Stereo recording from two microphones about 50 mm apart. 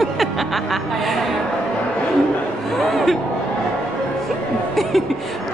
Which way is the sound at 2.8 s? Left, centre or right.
Centre.